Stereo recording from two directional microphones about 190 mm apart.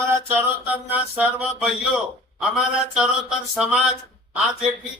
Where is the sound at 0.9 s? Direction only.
5° right (ahead or behind).